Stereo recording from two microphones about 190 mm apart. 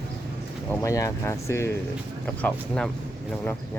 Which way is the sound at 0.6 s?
15° left (ahead or behind).